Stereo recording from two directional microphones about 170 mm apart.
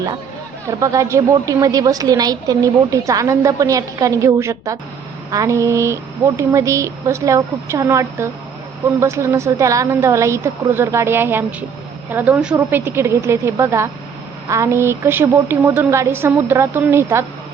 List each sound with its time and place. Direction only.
0.7 s a woman's voice: 20° right (ahead or behind)